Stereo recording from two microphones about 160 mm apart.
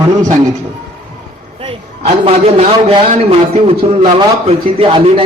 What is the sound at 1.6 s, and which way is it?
A man's voice, 40° right (ahead or behind).